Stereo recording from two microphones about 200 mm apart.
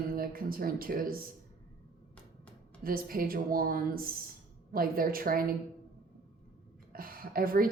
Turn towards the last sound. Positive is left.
turn(degrees=-45)  # may be behind; listen again after turning